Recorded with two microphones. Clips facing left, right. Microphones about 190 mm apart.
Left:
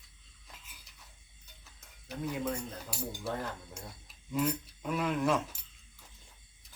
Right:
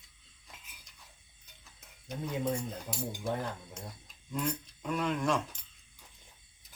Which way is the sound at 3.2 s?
15° right (ahead or behind).